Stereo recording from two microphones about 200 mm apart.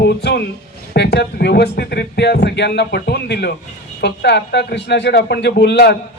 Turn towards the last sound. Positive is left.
turn(degrees=55)  # may be behind; listen again after turning